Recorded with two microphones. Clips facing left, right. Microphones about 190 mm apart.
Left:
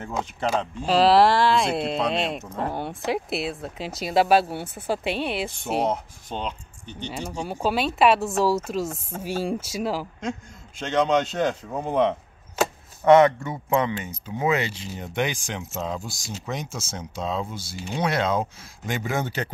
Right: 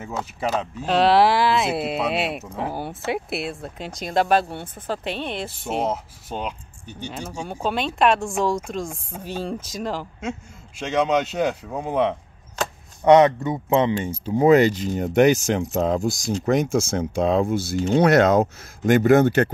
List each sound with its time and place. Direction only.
0.6 s speech: 5° right (ahead or behind)
7.6 s speech: 5° left (ahead or behind)
10.8 s speech: 10° right (ahead or behind)
13.0 s speech: 20° right (ahead or behind)
14.2 s speech: 35° right (ahead or behind)
15.8 s speech: 55° right (ahead or behind)